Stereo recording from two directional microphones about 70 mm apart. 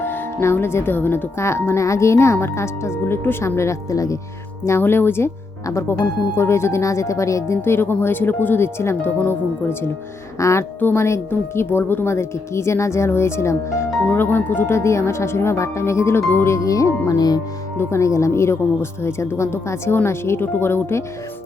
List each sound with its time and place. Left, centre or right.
0.0 s speech: left
4.6 s speech: left
10.4 s a woman's voice: left
14.2 s speech: left
16.6 s speech: left
17.7 s speech: left